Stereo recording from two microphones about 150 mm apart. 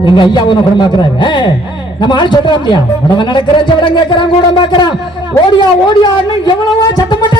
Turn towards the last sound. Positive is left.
turn(degrees=30)  # may be behind; listen again after turning